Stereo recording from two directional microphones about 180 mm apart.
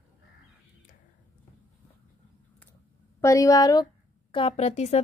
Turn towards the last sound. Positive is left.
turn(degrees=35)  # may be behind; listen again after turning